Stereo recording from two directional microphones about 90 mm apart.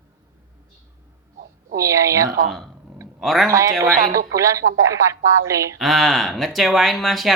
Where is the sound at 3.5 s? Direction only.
40° right (ahead or behind).